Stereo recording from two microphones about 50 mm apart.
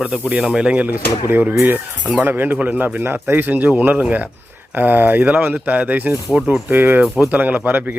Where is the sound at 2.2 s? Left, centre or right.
Right.